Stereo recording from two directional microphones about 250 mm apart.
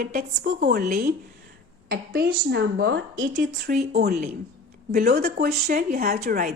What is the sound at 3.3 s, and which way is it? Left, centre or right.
A woman's voice, right.